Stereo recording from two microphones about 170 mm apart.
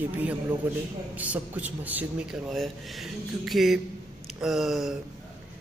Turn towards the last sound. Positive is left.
turn(degrees=0)  # may be behind; listen again after turning